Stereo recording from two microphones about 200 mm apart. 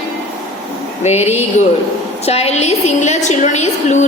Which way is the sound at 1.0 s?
35° left (ahead or behind).